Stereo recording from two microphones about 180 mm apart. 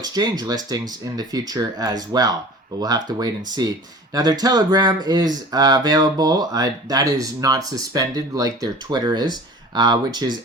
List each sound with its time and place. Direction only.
0.0 s speech: 20° right (ahead or behind)